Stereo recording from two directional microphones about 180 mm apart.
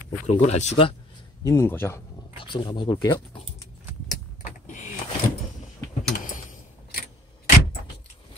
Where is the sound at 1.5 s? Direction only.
15° left (ahead or behind).